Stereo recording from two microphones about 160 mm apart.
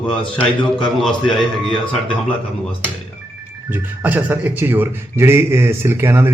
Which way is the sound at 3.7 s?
10° right (ahead or behind).